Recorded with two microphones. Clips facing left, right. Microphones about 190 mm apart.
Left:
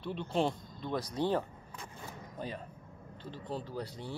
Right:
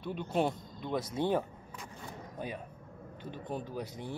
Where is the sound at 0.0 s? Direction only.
5° right (ahead or behind).